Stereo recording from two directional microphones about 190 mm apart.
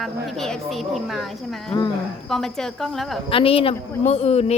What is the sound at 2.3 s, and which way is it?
Speech, centre (ahead or behind).